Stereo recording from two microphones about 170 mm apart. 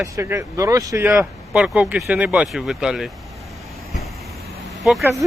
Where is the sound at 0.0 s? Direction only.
15° right (ahead or behind).